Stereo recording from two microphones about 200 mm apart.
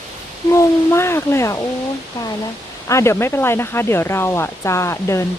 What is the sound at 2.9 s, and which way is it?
Speech, 15° left (ahead or behind).